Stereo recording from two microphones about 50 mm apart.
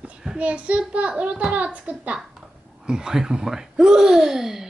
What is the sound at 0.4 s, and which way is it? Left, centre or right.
A child's voice, right.